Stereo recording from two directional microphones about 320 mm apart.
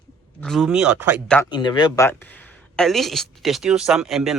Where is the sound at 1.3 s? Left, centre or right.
Centre.